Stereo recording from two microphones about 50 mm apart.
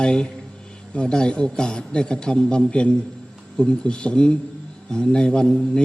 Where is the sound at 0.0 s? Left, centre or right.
Centre.